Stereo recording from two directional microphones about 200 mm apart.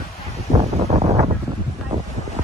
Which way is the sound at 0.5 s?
30° right (ahead or behind).